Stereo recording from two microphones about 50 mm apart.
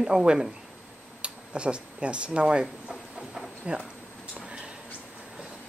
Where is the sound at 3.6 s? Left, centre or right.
Right.